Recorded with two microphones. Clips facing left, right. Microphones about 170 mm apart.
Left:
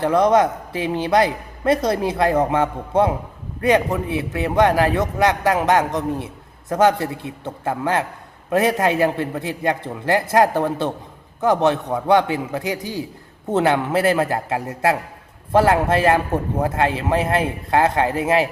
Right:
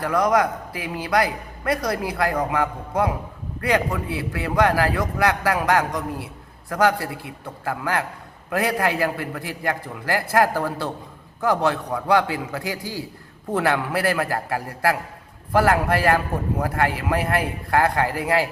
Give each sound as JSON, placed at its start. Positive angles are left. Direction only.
{"t": 0.0, "sound": "a man's voice", "side_deg": 25}